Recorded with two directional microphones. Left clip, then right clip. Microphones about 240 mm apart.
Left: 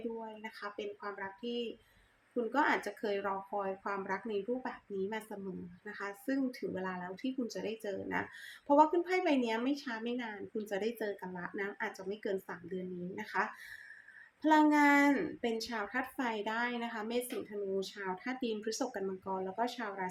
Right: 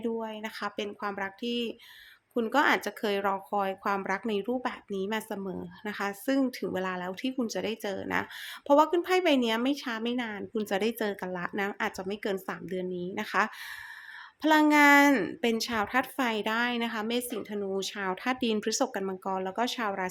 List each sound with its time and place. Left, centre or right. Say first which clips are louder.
0.2 s speech: right 9 dB; right